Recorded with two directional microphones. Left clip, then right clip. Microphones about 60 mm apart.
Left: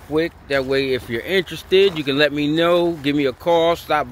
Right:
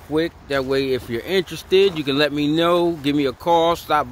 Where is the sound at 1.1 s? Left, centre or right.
Centre.